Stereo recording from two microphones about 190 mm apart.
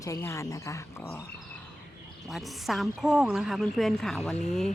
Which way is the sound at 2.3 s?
Centre (ahead or behind).